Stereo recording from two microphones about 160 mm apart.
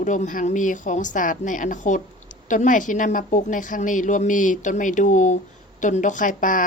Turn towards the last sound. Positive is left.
turn(degrees=55)  # may be behind; listen again after turning